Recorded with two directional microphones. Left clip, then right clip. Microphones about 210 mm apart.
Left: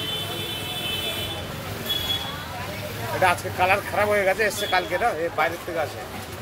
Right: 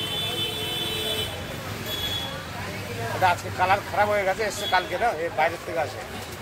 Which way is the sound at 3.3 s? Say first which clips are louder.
Left 1 dB; 55° left (ahead or behind).